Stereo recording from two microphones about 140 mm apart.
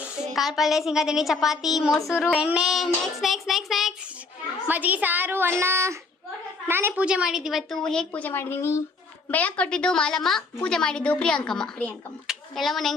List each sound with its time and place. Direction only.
0.0 s a woman's voice: centre (ahead or behind)
2.0 s child singing: 20° left (ahead or behind)
2.2 s a woman's voice: 5° right (ahead or behind)
4.7 s a woman's voice: 10° right (ahead or behind)